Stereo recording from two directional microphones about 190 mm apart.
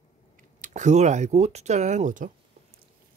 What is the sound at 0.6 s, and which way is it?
Speech, 40° right (ahead or behind).